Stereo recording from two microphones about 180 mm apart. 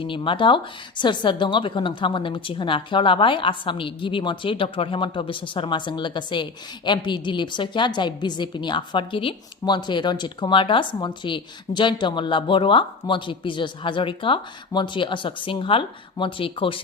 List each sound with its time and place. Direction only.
0.0 s a woman's voice: 30° left (ahead or behind)